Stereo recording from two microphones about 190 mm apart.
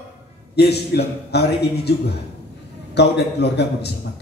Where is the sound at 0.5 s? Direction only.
60° left (ahead or behind).